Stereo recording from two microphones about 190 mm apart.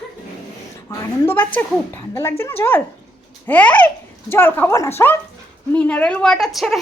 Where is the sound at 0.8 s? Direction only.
15° left (ahead or behind).